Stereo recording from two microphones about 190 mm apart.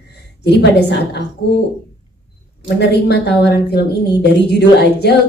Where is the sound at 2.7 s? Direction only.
60° left (ahead or behind).